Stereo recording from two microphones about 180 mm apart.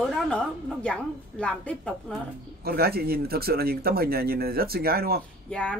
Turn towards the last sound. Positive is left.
turn(degrees=5)  # may be behind; listen again after turning